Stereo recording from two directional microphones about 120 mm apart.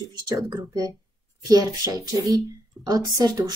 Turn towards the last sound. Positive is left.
turn(degrees=-35)  # may be behind; listen again after turning